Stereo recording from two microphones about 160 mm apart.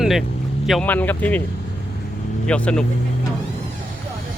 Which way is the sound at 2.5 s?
5° left (ahead or behind).